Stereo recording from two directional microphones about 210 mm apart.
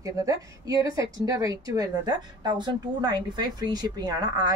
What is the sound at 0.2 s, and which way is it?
Speech, 15° right (ahead or behind).